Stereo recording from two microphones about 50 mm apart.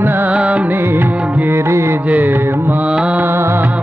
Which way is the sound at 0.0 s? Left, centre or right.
Right.